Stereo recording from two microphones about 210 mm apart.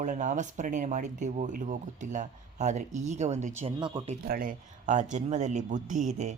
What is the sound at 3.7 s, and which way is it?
Speech, 20° right (ahead or behind).